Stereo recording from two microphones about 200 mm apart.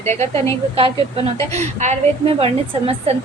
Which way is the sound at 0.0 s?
35° right (ahead or behind).